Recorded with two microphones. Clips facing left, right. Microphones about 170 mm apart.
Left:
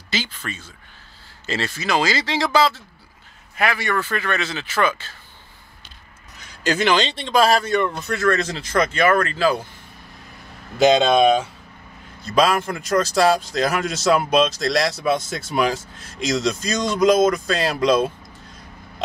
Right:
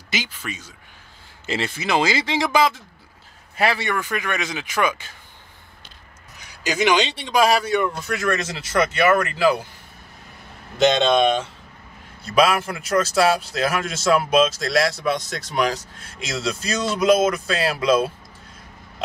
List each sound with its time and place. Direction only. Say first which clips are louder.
0.1 s a man's voice: left 1 dB; 10° right (ahead or behind)
3.5 s a man's voice: right 1 dB; 30° right (ahead or behind)
3.9 s a man's voice: left 2 dB; 15° right (ahead or behind)
6.4 s a man's voice: left 1 dB; 10° right (ahead or behind)
10.8 s speech: left 2 dB; 5° left (ahead or behind)
12.4 s speech: even; 5° right (ahead or behind)